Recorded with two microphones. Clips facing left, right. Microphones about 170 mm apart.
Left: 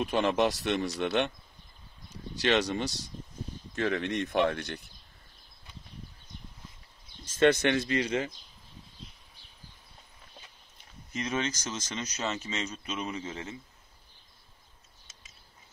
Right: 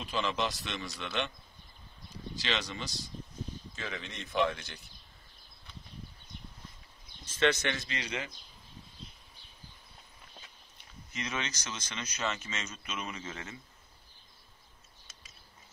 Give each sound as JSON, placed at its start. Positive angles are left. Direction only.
{"t": 0.0, "sound": "speech", "side_deg": 55}
{"t": 2.4, "sound": "speech", "side_deg": 50}
{"t": 7.2, "sound": "speech", "side_deg": 50}
{"t": 11.1, "sound": "a man's voice", "side_deg": 45}